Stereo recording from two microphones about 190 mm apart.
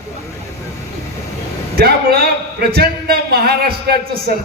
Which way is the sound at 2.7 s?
55° right (ahead or behind).